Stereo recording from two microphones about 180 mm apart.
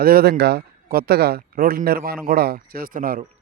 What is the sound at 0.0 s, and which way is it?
Speech, 60° right (ahead or behind).